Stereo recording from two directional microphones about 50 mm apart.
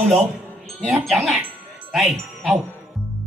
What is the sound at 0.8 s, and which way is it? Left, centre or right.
Speech, centre.